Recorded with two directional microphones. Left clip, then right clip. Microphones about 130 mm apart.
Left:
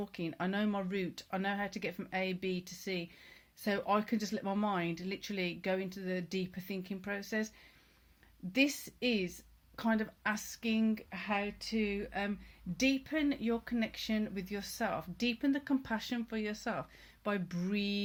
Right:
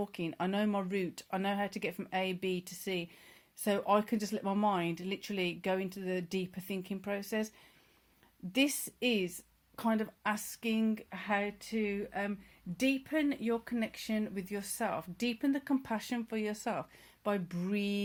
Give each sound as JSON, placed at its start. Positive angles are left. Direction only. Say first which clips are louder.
{"t": 0.0, "sound": "speech", "louder": "right 2 dB", "side_deg": -50}
{"t": 8.5, "sound": "a woman's voice", "louder": "even", "side_deg": -50}
{"t": 12.7, "sound": "speech", "louder": "right 1 dB", "side_deg": -40}